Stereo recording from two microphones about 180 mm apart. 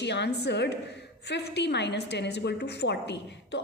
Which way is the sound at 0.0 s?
70° left (ahead or behind).